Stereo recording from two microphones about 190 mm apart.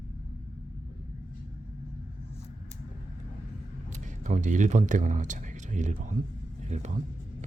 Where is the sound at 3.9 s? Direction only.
40° right (ahead or behind).